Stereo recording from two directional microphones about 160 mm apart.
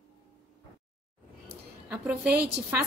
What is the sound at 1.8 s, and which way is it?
Speech, 10° right (ahead or behind).